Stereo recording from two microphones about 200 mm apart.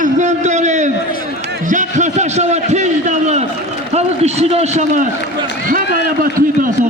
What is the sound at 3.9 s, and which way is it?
A man's voice, 35° right (ahead or behind).